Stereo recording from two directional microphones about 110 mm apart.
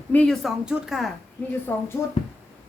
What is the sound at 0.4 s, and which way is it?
Speech, 5° right (ahead or behind).